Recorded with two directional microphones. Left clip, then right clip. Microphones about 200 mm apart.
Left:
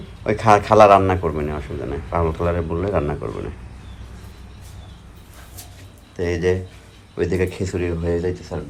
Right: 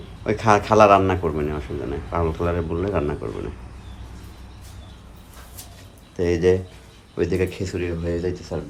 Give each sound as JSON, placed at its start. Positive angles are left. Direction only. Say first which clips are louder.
{"t": 0.3, "sound": "a man's voice", "louder": "left 3 dB", "side_deg": -10}
{"t": 6.1, "sound": "a man's voice", "louder": "right 2 dB", "side_deg": -20}